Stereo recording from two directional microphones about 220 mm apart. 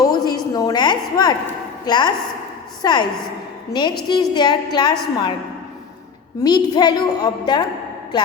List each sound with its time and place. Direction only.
0.0 s a sound: 15° left (ahead or behind)
1.8 s a woman's voice: 20° left (ahead or behind)
6.4 s a woman's voice: 20° left (ahead or behind)